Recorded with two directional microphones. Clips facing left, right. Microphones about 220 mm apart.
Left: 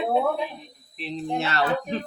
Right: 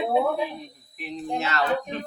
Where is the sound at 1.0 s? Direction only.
30° left (ahead or behind).